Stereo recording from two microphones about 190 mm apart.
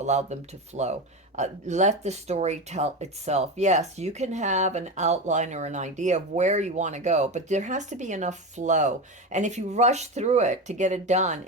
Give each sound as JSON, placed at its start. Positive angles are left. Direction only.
{"t": 0.0, "sound": "speech", "side_deg": -35}